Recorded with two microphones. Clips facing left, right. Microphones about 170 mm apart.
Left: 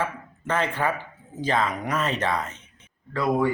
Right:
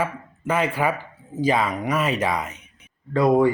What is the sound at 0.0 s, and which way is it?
Speech, 10° right (ahead or behind).